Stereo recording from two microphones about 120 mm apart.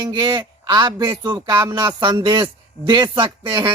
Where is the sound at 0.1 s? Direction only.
35° right (ahead or behind).